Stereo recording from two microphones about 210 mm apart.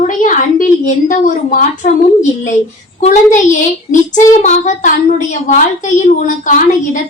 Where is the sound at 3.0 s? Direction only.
35° left (ahead or behind).